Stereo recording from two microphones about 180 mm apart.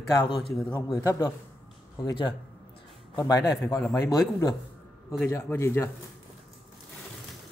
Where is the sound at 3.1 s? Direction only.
20° left (ahead or behind).